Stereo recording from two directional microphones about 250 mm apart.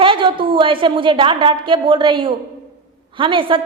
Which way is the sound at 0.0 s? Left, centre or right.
Centre.